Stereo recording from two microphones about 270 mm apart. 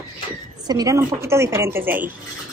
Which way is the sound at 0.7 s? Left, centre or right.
Centre.